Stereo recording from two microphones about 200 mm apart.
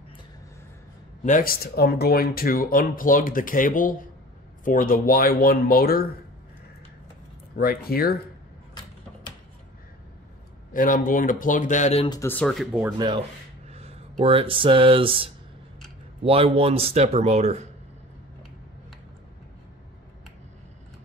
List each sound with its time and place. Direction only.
1.2 s speech: 45° left (ahead or behind)
7.5 s speech: 50° left (ahead or behind)
10.7 s speech: 45° left (ahead or behind)
12.1 s speech: 10° left (ahead or behind)
13.7 s speech: 30° right (ahead or behind)